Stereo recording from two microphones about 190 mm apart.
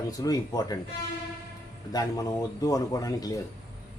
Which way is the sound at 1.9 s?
20° left (ahead or behind).